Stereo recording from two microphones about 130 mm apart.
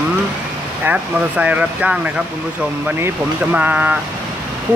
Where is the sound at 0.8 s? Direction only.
10° right (ahead or behind).